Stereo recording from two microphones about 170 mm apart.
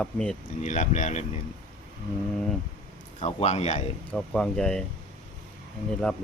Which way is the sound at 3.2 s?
40° left (ahead or behind).